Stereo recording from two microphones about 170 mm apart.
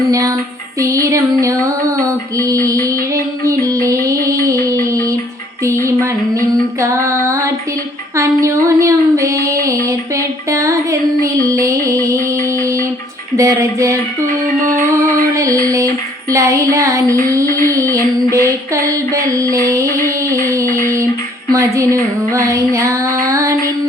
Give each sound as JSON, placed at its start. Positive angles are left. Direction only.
{"t": 0.1, "sound": "music", "side_deg": -20}
{"t": 5.6, "sound": "music", "side_deg": -15}
{"t": 8.1, "sound": "a sound", "side_deg": -15}
{"t": 11.2, "sound": "music", "side_deg": -20}
{"t": 13.3, "sound": "music", "side_deg": -20}
{"t": 15.6, "sound": "a sound", "side_deg": -20}
{"t": 16.3, "sound": "music", "side_deg": -15}
{"t": 21.5, "sound": "music", "side_deg": -20}